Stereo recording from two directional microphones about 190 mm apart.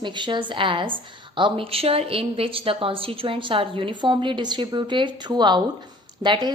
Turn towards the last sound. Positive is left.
turn(degrees=-25)  # may be behind; listen again after turning